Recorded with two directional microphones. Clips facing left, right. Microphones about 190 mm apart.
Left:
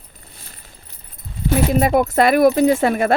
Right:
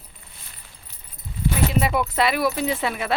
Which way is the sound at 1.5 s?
45° left (ahead or behind).